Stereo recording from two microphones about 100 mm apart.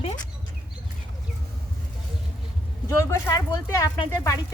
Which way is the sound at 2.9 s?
30° left (ahead or behind).